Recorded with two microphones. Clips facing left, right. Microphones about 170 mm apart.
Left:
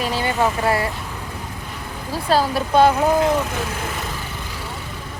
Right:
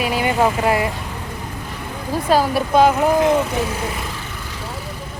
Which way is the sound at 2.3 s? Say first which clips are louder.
Right 1 dB; 10° right (ahead or behind).